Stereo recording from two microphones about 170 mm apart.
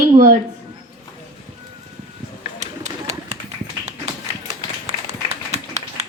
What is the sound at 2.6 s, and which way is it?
Run, 40° right (ahead or behind).